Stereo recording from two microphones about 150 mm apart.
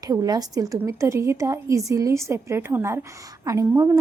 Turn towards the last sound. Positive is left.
turn(degrees=-20)  # may be behind; listen again after turning